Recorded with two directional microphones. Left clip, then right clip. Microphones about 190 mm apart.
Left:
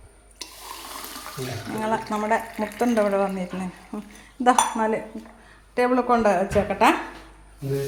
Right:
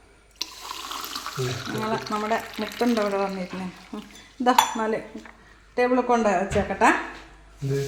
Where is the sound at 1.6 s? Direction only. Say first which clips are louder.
Left 5 dB; 5° left (ahead or behind).